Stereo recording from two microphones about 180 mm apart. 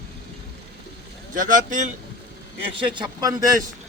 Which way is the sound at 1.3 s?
45° right (ahead or behind).